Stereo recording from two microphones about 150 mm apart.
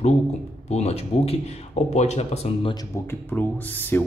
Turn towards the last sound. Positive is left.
turn(degrees=10)  # may be behind; listen again after turning